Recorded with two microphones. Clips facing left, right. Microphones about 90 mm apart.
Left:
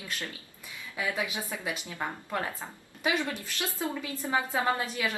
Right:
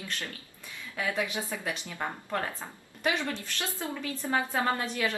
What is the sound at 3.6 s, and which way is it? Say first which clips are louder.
Speech: left 2 dB; 15° left (ahead or behind).